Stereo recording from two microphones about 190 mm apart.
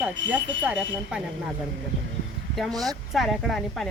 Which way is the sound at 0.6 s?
5° right (ahead or behind).